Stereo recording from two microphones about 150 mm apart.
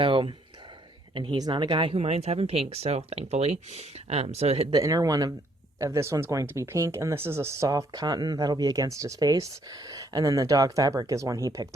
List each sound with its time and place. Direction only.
0.0 s speech: 35° right (ahead or behind)
4.7 s speech: 25° right (ahead or behind)